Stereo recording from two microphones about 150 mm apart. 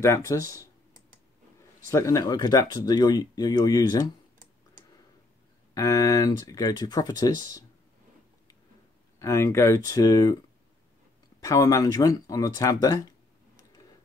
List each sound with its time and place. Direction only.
0.0 s speech: 20° left (ahead or behind)
1.9 s speech: 20° left (ahead or behind)
5.8 s speech: 20° left (ahead or behind)
9.2 s speech: 20° left (ahead or behind)
11.4 s speech: 20° left (ahead or behind)